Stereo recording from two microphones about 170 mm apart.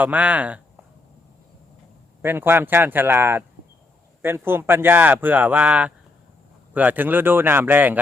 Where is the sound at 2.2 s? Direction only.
15° right (ahead or behind).